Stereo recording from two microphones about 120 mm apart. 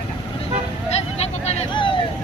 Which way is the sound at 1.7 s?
45° left (ahead or behind).